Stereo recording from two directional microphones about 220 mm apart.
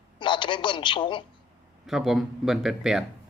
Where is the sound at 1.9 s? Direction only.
Centre (ahead or behind).